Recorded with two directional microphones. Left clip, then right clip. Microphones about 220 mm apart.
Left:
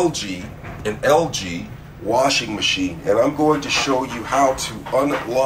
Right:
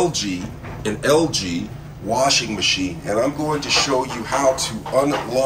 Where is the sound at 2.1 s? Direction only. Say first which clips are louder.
Even; 5° right (ahead or behind).